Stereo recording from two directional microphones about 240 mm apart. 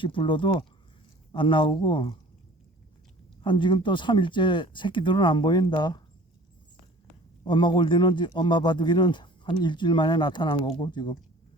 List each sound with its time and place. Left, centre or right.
0.0 s speech: left
3.4 s speech: centre
7.4 s speech: centre